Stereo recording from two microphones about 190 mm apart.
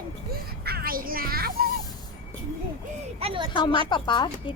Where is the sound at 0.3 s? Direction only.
55° right (ahead or behind).